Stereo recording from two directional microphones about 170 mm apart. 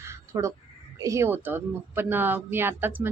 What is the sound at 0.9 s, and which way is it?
Speech, 20° right (ahead or behind).